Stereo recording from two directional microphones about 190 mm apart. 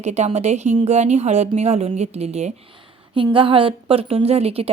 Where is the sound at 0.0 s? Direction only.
35° right (ahead or behind).